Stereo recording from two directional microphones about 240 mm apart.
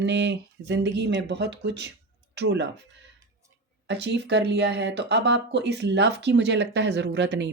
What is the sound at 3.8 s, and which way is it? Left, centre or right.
Speech, right.